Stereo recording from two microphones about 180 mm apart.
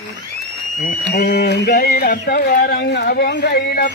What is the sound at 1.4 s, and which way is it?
Speech, 65° left (ahead or behind).